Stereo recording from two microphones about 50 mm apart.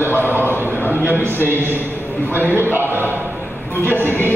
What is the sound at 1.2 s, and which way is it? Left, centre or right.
A man's voice, right.